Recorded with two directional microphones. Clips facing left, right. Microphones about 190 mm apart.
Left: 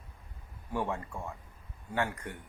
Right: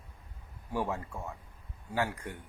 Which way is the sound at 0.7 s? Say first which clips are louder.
Even; 5° right (ahead or behind).